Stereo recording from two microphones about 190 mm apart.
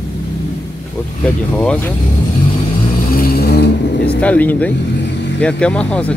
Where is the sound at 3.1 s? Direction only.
55° left (ahead or behind).